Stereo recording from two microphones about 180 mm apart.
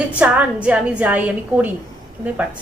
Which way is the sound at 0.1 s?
10° right (ahead or behind).